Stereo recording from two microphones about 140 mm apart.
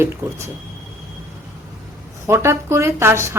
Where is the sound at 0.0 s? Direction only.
20° right (ahead or behind).